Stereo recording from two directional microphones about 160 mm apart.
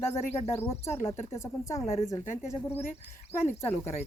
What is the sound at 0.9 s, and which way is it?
A woman's voice, 15° left (ahead or behind).